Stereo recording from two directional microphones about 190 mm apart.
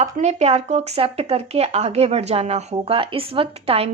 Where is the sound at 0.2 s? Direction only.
35° right (ahead or behind).